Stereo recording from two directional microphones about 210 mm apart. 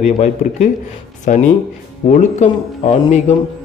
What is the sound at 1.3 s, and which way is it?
Speech, 40° left (ahead or behind).